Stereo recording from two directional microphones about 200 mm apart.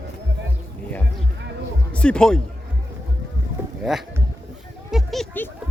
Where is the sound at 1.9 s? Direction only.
5° left (ahead or behind).